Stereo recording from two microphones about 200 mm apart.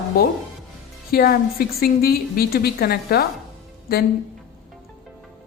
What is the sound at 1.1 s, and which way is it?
A woman's voice, 50° left (ahead or behind).